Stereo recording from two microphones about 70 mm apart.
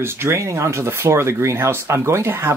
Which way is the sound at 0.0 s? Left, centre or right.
Right.